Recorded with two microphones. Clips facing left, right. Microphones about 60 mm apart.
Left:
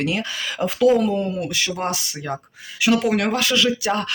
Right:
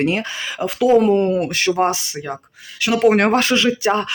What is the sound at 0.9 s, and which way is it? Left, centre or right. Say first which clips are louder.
Speech: right 7 dB; right.